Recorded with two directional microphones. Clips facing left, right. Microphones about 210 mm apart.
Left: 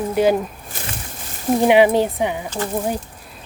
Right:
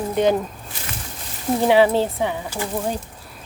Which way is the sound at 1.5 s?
15° left (ahead or behind).